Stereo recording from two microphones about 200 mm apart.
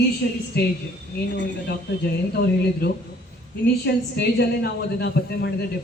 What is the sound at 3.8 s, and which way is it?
A man's voice, 55° left (ahead or behind).